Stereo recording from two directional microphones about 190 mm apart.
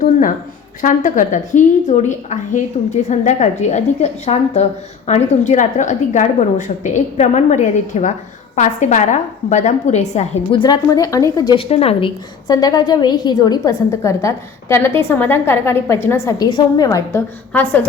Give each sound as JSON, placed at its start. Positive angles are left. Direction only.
{"t": 0.0, "sound": "a woman's voice", "side_deg": 45}
{"t": 10.6, "sound": "a woman's voice", "side_deg": 20}
{"t": 11.7, "sound": "a woman's voice", "side_deg": 30}